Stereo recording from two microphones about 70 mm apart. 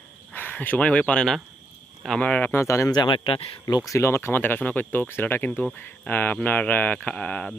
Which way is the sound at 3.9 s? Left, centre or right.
Left.